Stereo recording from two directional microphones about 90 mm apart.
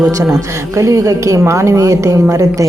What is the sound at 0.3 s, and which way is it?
A woman's voice, 35° right (ahead or behind).